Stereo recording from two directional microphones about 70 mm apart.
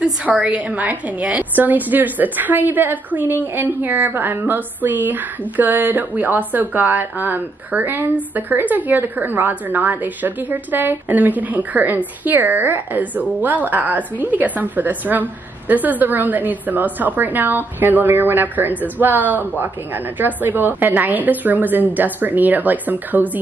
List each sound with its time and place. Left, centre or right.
0.0 s a woman's voice: centre